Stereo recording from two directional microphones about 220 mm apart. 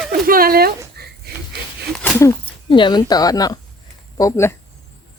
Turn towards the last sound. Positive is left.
turn(degrees=15)  # may be behind; listen again after turning